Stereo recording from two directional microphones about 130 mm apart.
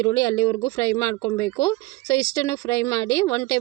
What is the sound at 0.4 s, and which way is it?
Speech, 20° left (ahead or behind).